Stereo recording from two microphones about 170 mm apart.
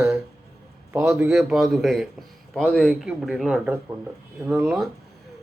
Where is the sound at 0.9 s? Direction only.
5° right (ahead or behind).